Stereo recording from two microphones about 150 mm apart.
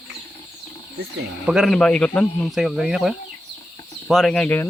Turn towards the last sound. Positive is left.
turn(degrees=10)  # may be behind; listen again after turning